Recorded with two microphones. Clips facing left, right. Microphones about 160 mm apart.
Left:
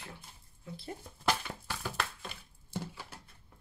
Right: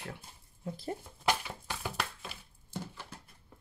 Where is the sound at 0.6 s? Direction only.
40° right (ahead or behind).